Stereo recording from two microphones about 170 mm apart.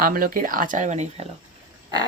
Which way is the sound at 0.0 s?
55° right (ahead or behind).